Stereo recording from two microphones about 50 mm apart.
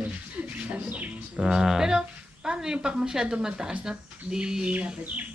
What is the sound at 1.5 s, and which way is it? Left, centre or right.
A woman's voice, centre.